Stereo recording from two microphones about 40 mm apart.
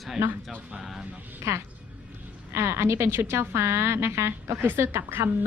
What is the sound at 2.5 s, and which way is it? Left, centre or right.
A woman's voice, right.